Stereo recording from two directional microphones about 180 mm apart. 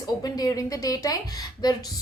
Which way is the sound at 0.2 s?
20° left (ahead or behind).